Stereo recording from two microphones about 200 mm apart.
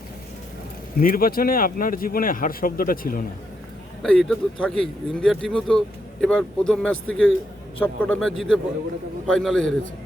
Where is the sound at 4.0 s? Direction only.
Centre (ahead or behind).